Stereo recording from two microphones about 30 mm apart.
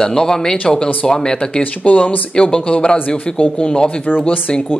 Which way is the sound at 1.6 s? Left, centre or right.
Left.